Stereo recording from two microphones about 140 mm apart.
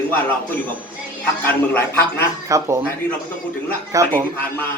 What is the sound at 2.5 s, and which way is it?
Speech, 20° right (ahead or behind).